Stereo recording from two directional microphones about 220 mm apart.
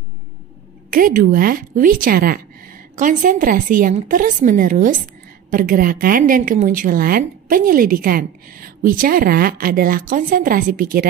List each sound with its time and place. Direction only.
0.8 s a woman's voice: 40° right (ahead or behind)